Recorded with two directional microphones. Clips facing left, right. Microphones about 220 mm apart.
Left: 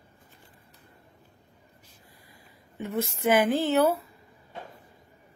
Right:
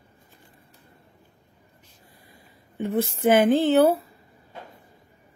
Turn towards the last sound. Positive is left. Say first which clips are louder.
# right 5 dB
turn(degrees=-30)  # may be behind; listen again after turning